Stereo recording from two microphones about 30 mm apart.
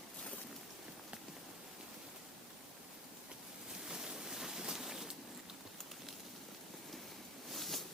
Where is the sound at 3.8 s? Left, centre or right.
Right.